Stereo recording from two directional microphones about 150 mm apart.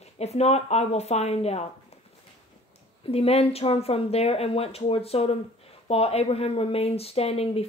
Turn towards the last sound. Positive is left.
turn(degrees=40)  # may be behind; listen again after turning